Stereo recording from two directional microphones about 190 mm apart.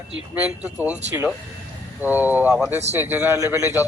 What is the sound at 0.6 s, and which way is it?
Speech, 10° right (ahead or behind).